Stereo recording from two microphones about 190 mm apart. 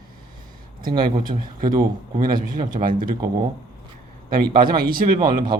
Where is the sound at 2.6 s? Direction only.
45° right (ahead or behind).